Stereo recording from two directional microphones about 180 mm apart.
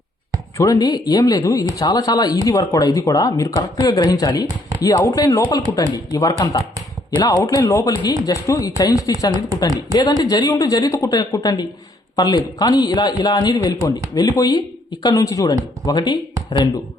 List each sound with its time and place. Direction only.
0.5 s speech: 20° left (ahead or behind)